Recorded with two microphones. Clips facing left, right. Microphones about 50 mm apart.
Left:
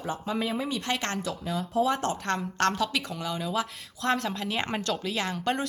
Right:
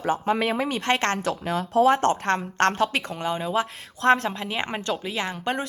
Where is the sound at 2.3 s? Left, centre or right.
Right.